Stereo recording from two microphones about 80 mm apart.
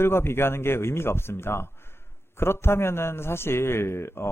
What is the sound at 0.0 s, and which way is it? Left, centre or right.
A man's voice, left.